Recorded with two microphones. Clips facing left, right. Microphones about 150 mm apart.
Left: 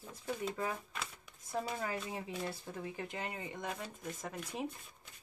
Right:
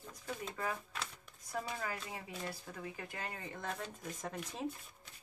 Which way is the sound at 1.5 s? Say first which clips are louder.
Left 3 dB; 25° left (ahead or behind).